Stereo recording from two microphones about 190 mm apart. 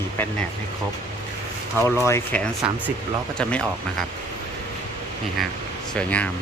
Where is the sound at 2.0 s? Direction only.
10° left (ahead or behind).